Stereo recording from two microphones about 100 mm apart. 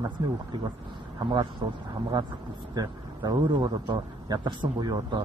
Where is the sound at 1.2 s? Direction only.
45° right (ahead or behind).